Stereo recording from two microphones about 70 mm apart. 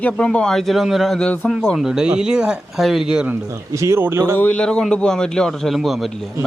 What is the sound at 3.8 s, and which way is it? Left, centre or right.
Speech, right.